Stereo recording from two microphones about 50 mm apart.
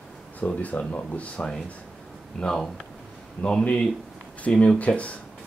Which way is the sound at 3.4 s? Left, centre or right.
Left.